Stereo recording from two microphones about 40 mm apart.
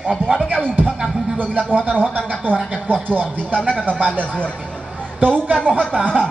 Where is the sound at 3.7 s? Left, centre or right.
Left.